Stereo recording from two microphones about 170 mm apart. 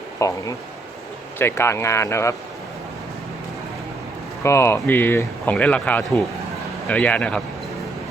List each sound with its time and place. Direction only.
0.2 s speech: 20° left (ahead or behind)
4.4 s speech: 15° left (ahead or behind)